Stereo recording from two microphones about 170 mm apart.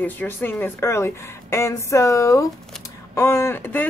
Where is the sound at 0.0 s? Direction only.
10° left (ahead or behind).